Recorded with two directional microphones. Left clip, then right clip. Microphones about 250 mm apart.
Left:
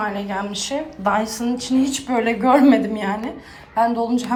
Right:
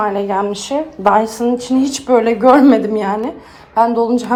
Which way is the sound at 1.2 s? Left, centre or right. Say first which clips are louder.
Right 8 dB; centre.